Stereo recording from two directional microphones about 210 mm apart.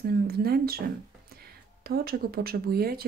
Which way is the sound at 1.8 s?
45° right (ahead or behind).